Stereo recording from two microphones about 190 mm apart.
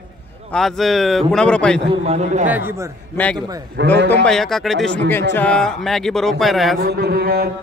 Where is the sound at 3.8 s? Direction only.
65° right (ahead or behind).